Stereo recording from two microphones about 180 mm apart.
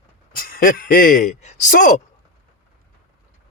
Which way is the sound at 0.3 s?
55° left (ahead or behind).